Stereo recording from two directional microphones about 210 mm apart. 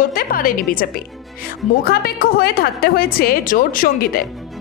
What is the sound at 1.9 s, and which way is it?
A woman's voice, 45° left (ahead or behind).